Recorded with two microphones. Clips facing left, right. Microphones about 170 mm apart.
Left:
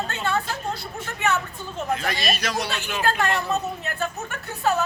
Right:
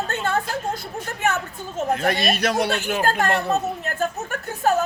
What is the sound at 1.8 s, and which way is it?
Speech, 55° right (ahead or behind).